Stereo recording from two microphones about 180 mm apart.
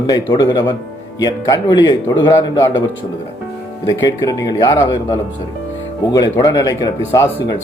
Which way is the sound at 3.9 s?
20° left (ahead or behind).